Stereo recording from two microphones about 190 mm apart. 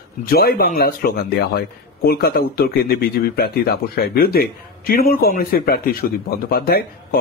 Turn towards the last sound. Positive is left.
turn(degrees=50)  # may be behind; listen again after turning